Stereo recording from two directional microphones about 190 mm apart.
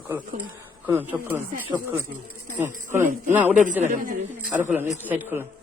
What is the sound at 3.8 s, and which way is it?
Speech, 45° right (ahead or behind).